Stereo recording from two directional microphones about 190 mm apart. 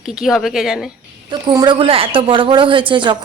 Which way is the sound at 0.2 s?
Centre (ahead or behind).